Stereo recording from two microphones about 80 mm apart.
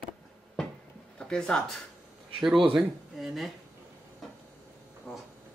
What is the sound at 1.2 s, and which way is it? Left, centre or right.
Speech, centre.